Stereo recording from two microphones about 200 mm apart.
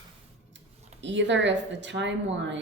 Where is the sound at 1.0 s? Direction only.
65° right (ahead or behind).